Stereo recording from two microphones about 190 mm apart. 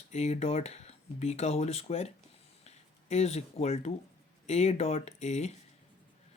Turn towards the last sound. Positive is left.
turn(degrees=35)  # may be behind; listen again after turning